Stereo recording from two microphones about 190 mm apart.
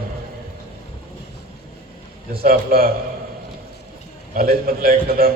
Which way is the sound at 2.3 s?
50° right (ahead or behind).